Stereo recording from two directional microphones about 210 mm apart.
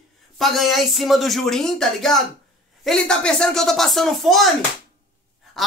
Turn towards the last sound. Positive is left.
turn(degrees=0)  # may be behind; listen again after turning